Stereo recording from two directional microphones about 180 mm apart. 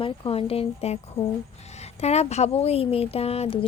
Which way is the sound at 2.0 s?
35° left (ahead or behind).